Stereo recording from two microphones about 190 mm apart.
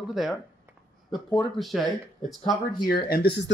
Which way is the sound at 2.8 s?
55° left (ahead or behind).